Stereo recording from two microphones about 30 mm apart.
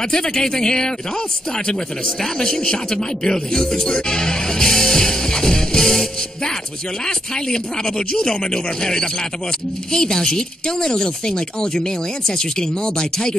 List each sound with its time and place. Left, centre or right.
0.1 s speech: left